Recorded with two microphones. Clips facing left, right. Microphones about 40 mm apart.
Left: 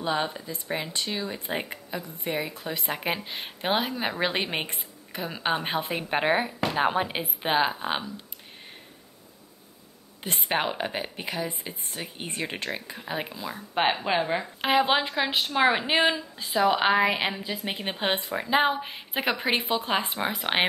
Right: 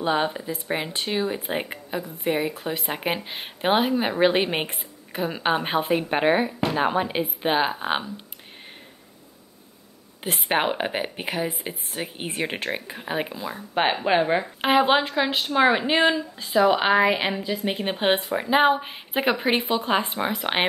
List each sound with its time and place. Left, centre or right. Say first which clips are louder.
0.0 s a woman's voice: right 4 dB; centre
1.4 s a woman's voice: right 3 dB; centre
7.8 s a woman's voice: right 4 dB; centre
10.2 s a woman's voice: right 4 dB; centre